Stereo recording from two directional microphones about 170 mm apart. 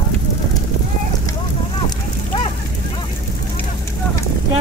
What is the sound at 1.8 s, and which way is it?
Fire, 30° left (ahead or behind).